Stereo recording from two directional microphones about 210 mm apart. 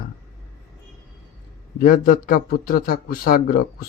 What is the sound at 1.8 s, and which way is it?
Speech, 45° left (ahead or behind).